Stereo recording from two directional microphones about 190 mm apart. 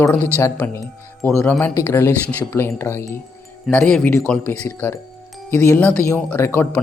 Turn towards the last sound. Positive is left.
turn(degrees=10)  # may be behind; listen again after turning